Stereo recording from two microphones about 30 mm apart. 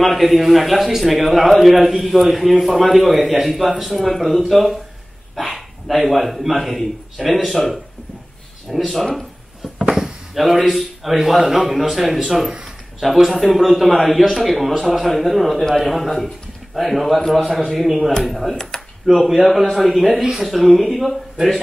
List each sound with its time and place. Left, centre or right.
0.0 s a man's voice: centre
10.3 s a man's voice: centre
20.2 s speech: right
20.4 s a man's voice: centre